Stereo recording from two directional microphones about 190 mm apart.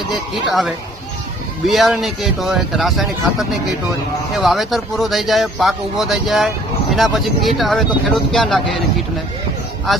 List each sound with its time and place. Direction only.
1.6 s speech: centre (ahead or behind)
9.9 s speech: centre (ahead or behind)